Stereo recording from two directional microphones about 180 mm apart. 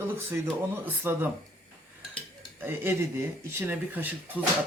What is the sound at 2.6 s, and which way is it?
Speech, 10° right (ahead or behind).